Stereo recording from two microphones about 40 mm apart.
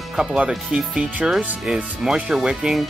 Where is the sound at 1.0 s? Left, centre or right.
Right; by 2.7 s centre.